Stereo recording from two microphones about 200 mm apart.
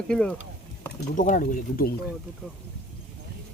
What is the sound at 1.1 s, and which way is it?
Speech, 40° left (ahead or behind).